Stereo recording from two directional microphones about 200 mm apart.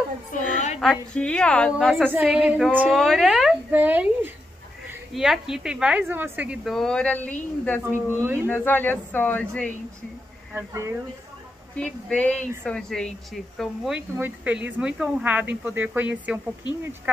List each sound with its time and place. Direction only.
0.3 s a sound: 35° left (ahead or behind)
0.7 s speech: 5° left (ahead or behind)
7.8 s speech: 10° right (ahead or behind)
8.5 s speech: 10° left (ahead or behind)
10.5 s speech: 15° right (ahead or behind)
11.7 s speech: 5° left (ahead or behind)